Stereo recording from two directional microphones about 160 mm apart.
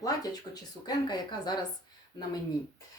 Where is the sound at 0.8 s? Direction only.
25° left (ahead or behind).